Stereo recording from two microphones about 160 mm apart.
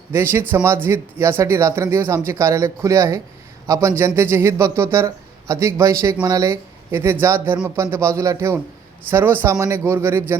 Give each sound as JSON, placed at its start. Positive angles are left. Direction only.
{"t": 0.1, "sound": "speech", "side_deg": -15}